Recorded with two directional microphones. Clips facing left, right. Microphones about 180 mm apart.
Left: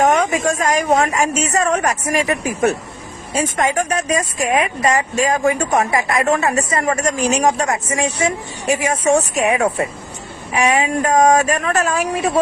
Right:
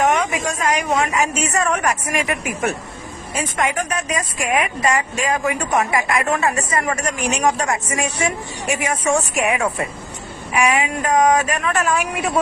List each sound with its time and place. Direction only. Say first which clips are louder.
0.0 s speech: left 3 dB; 45° left (ahead or behind)
1.4 s a woman's voice: left 2 dB; 30° left (ahead or behind)